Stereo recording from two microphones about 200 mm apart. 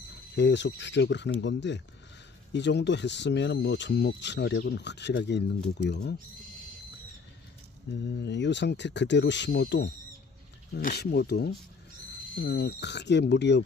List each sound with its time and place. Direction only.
0.4 s speech: 60° left (ahead or behind)
7.9 s speech: 60° left (ahead or behind)
10.7 s speech: 50° left (ahead or behind)